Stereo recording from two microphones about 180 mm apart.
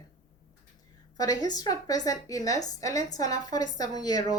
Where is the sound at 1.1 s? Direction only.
20° left (ahead or behind).